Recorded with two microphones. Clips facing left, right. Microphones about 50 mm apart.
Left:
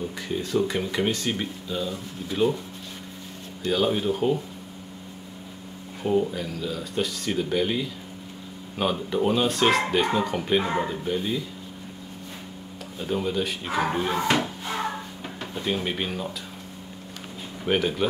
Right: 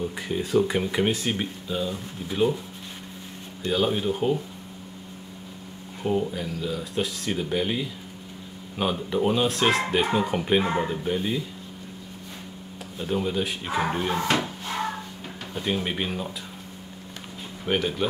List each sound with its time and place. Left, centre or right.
0.3 s speech: centre
3.6 s speech: centre
6.0 s speech: centre
10.6 s speech: centre
10.9 s speech: centre
13.0 s speech: centre
14.1 s wood: centre
15.5 s speech: centre
17.6 s speech: centre